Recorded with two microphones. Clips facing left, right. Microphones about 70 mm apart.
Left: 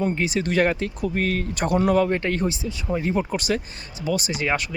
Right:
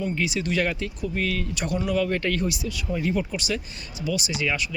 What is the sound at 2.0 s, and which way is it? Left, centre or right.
Speech, left.